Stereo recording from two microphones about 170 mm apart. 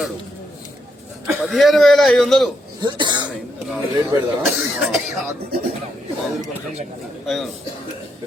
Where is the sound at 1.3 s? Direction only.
Centre (ahead or behind).